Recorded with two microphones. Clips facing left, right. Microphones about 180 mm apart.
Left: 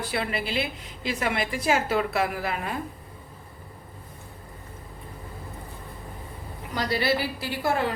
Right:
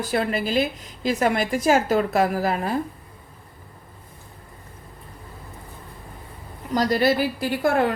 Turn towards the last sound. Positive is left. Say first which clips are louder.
# right 6 dB
turn(degrees=-50)  # may be behind; listen again after turning